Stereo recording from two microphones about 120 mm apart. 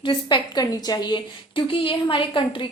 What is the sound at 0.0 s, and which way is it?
A woman's voice, 45° left (ahead or behind).